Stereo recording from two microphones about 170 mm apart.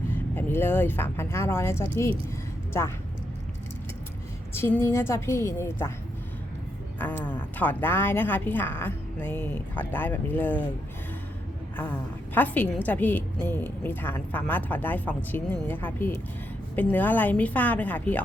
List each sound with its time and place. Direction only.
0.1 s a woman's voice: 10° left (ahead or behind)
4.5 s a woman's voice: 15° left (ahead or behind)
7.3 s a woman's voice: 10° left (ahead or behind)
11.8 s a woman's voice: 10° left (ahead or behind)